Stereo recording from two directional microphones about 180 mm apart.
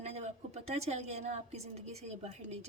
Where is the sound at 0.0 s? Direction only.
35° right (ahead or behind).